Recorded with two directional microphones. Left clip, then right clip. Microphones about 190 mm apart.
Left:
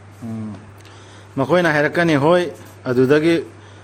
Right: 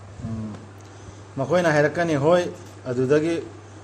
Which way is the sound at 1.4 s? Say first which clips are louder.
Left 3 dB; 50° left (ahead or behind).